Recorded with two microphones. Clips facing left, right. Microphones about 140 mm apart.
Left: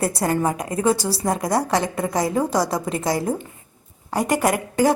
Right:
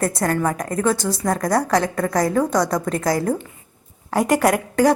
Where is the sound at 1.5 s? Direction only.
25° left (ahead or behind).